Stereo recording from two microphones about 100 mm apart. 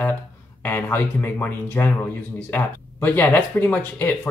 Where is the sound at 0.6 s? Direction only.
20° left (ahead or behind).